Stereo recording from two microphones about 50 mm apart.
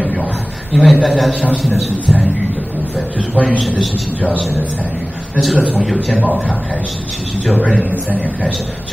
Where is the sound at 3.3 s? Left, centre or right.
Left.